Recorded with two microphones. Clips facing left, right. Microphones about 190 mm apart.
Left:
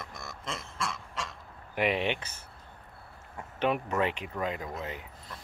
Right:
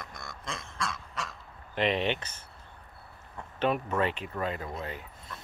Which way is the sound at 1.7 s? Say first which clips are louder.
Right 1 dB; 10° left (ahead or behind).